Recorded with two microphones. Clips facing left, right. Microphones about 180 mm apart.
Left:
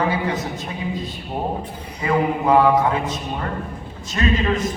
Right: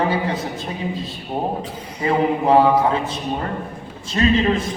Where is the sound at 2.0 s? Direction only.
30° right (ahead or behind).